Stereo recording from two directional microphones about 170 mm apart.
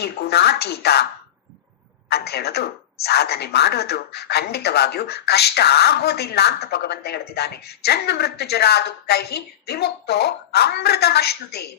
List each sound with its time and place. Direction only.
0.0 s a woman's voice: 70° left (ahead or behind)
2.0 s a woman's voice: 70° left (ahead or behind)